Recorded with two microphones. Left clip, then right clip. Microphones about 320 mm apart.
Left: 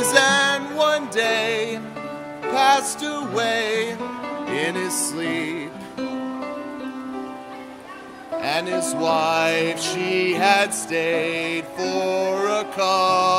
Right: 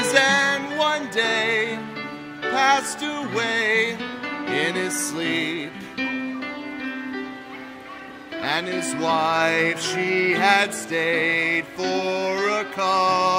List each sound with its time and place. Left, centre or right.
0.1 s music: centre
8.4 s music: centre